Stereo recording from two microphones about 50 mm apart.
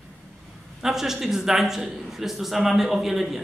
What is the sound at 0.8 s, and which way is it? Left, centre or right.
A man's voice, centre.